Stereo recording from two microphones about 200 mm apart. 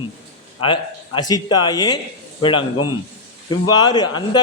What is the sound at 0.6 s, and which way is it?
Speech, 25° left (ahead or behind).